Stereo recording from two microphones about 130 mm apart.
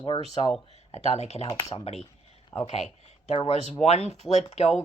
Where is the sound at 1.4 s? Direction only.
30° left (ahead or behind).